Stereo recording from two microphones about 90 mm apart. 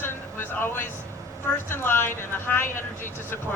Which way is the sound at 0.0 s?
25° left (ahead or behind).